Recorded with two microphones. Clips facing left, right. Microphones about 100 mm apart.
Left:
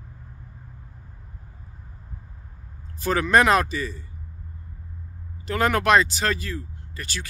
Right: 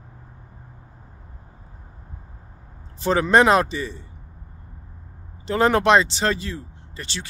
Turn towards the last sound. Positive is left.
turn(degrees=-25)  # may be behind; listen again after turning